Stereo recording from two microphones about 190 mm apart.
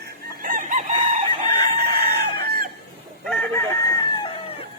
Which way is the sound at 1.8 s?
55° right (ahead or behind).